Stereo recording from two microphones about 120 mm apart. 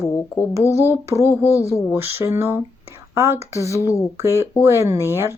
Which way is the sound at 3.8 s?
25° left (ahead or behind).